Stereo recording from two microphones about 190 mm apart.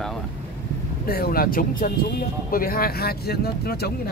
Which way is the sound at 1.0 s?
50° left (ahead or behind).